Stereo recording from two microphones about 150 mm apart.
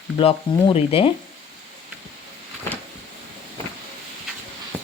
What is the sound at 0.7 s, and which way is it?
Speech, 40° left (ahead or behind).